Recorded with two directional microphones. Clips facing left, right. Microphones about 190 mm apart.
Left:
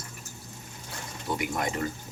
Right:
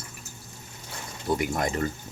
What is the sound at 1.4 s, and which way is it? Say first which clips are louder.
Speech: right 3 dB; 40° right (ahead or behind).